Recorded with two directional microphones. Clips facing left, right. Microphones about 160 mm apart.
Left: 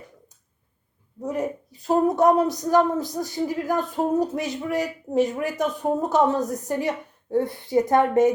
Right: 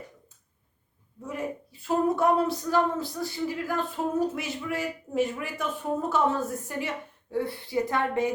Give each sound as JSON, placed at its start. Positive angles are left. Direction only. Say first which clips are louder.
{"t": 1.2, "sound": "speech", "louder": "left 6 dB", "side_deg": 40}